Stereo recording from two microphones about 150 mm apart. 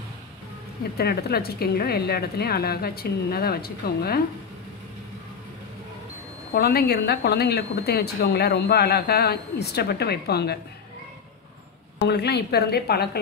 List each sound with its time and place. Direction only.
0.9 s a woman's voice: 90° left
6.5 s a woman's voice: 90° left
12.1 s a woman's voice: 90° left